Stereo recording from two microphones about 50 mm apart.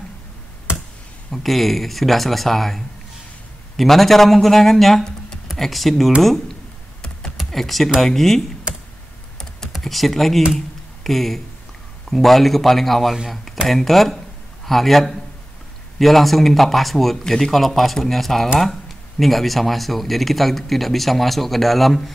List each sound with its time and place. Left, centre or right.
1.3 s speech: centre
7.0 s typing: centre
7.3 s speech: centre
9.8 s speech: centre